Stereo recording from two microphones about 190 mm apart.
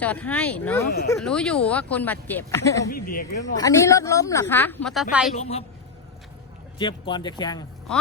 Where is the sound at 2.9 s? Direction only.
50° left (ahead or behind).